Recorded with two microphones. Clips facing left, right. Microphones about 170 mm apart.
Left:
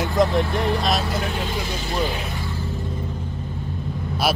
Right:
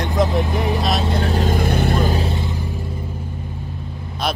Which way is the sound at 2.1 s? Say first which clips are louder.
Right 6 dB; 30° right (ahead or behind).